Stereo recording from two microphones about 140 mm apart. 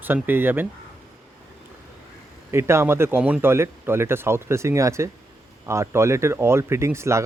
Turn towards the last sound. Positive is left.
turn(degrees=-20)  # may be behind; listen again after turning